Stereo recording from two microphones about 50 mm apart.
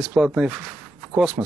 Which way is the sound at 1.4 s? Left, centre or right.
Right.